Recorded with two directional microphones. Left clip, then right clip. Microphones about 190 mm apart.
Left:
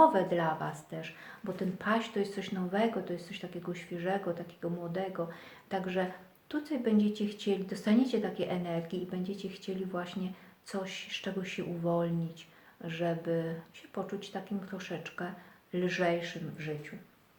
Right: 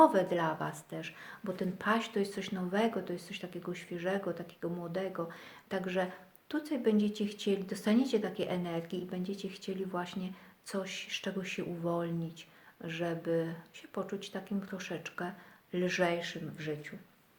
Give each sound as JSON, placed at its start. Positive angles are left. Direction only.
{"t": 0.0, "sound": "speech", "side_deg": -45}